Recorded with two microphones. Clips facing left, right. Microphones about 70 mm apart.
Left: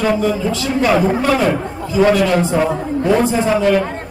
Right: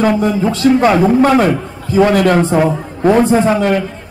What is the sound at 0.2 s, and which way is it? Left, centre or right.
A man's voice, right.